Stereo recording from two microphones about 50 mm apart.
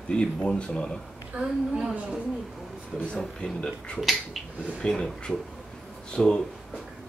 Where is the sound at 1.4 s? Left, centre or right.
Right.